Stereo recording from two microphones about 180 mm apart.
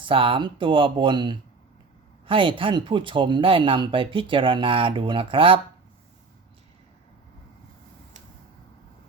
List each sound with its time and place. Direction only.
0.0 s speech: 30° right (ahead or behind)